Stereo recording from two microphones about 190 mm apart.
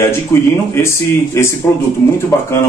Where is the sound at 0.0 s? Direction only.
15° left (ahead or behind).